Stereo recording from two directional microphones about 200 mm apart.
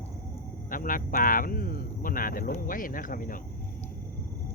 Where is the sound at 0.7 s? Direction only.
45° left (ahead or behind).